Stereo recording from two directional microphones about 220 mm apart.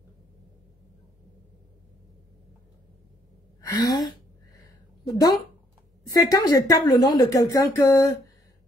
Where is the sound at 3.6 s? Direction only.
15° left (ahead or behind).